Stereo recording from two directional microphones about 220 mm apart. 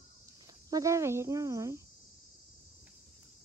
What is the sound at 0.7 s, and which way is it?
Speech, 15° right (ahead or behind).